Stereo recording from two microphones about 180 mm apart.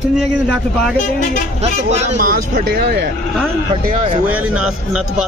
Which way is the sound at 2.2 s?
50° right (ahead or behind).